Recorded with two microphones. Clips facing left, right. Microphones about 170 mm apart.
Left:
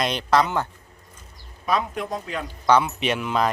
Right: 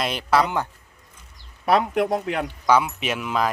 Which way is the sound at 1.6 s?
70° right (ahead or behind).